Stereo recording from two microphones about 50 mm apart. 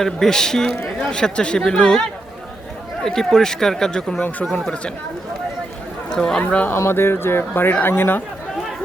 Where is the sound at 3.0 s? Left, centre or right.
Centre.